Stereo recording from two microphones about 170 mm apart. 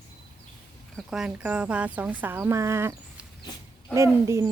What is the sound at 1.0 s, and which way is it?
Speech, 5° right (ahead or behind).